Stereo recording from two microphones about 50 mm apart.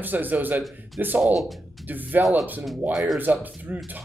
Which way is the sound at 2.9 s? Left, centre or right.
Centre.